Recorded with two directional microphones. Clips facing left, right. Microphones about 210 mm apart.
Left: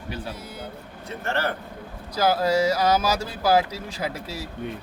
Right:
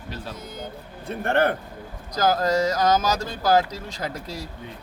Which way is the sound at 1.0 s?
55° right (ahead or behind).